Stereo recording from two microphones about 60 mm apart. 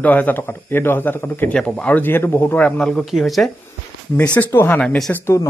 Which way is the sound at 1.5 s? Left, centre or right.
Centre.